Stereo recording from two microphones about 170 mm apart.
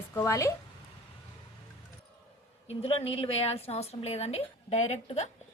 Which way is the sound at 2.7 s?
35° left (ahead or behind).